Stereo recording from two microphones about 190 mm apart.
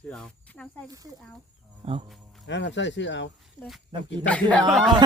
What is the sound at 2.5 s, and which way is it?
Speech, 70° left (ahead or behind).